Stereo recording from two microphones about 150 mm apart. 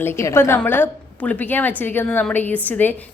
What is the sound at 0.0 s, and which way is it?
A woman's voice, 15° left (ahead or behind).